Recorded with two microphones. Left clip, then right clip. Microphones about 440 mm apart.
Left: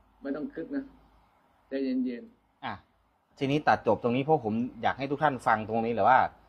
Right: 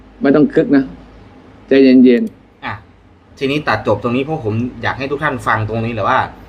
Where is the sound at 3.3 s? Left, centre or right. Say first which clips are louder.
Right 9 dB; left.